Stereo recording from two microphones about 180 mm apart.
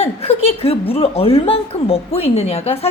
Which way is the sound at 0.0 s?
35° left (ahead or behind).